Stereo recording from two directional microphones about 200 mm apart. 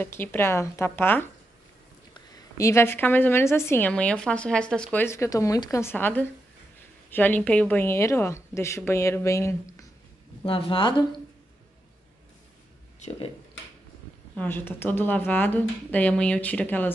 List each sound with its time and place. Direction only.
0.0 s speech: 10° left (ahead or behind)
10.4 s speech: 25° left (ahead or behind)
14.3 s speech: 10° left (ahead or behind)